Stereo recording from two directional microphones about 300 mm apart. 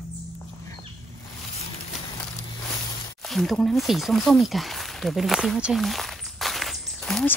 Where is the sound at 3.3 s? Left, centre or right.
Centre.